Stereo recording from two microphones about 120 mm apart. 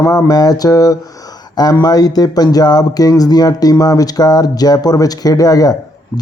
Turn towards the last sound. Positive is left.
turn(degrees=30)  # may be behind; listen again after turning